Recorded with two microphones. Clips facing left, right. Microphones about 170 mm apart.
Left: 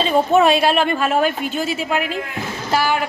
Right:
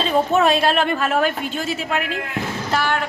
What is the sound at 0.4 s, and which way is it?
A woman's voice, 5° left (ahead or behind).